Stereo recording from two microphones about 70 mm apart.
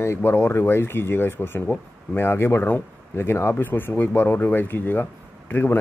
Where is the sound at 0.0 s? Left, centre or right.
Left.